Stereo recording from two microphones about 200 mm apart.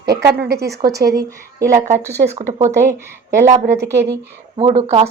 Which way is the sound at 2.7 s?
15° right (ahead or behind).